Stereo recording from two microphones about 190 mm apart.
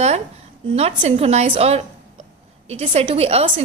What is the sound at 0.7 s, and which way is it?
A woman's voice, 35° right (ahead or behind).